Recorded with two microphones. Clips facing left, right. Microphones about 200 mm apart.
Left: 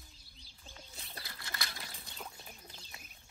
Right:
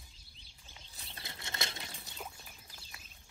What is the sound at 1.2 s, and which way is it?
Bird flight, 25° right (ahead or behind).